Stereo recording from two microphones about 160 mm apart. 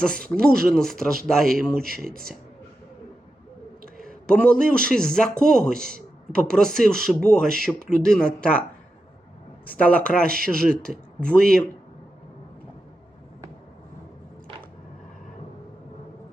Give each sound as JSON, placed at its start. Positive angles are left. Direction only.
{"t": 0.0, "sound": "speech", "side_deg": 5}
{"t": 4.3, "sound": "a man's voice", "side_deg": 5}
{"t": 9.6, "sound": "speech", "side_deg": 10}